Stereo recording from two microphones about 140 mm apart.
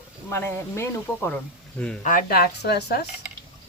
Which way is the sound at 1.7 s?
5° left (ahead or behind).